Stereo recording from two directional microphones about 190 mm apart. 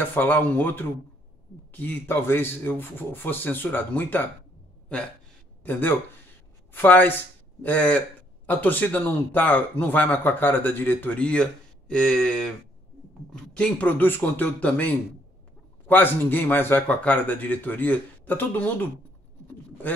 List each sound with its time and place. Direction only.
0.0 s speech: 10° left (ahead or behind)
5.6 s speech: 10° left (ahead or behind)